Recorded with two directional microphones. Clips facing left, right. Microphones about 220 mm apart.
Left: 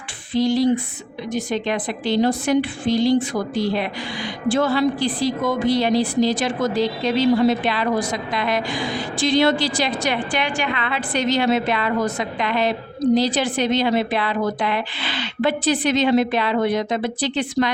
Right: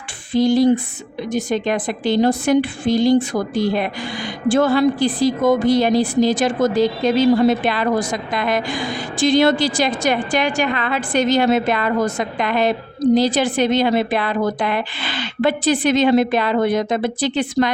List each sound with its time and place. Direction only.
0.3 s a woman's voice: 50° right (ahead or behind)